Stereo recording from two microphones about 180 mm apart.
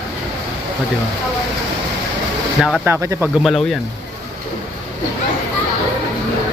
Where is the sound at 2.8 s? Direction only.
15° right (ahead or behind).